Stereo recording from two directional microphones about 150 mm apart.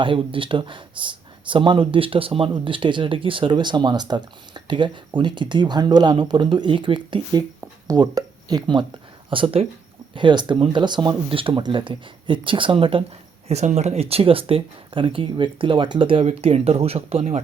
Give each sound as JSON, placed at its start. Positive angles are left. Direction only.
{"t": 0.0, "sound": "speech", "side_deg": -35}
{"t": 13.5, "sound": "speech", "side_deg": -50}